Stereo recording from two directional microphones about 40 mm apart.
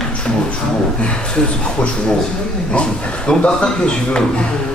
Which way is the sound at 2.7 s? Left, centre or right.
Left.